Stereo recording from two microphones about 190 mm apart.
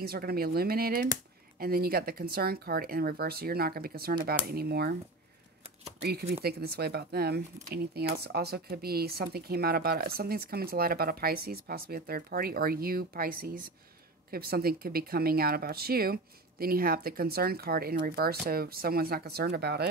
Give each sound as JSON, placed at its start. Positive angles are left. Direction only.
{"t": 0.0, "sound": "speech", "side_deg": -55}
{"t": 5.9, "sound": "speech", "side_deg": -55}